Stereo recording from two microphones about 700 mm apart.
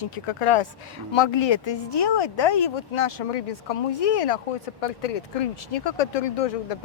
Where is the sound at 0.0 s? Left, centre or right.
Left.